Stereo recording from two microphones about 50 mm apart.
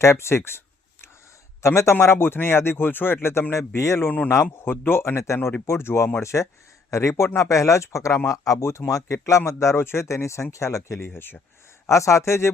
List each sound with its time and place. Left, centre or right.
0.0 s speech: left
1.6 s speech: left
3.8 s speech: left
4.5 s speech: left
4.9 s speech: left
6.1 s a man's voice: left
8.3 s speech: left
8.9 s speech: left
9.5 s a man's voice: left
9.8 s speech: left
11.9 s speech: left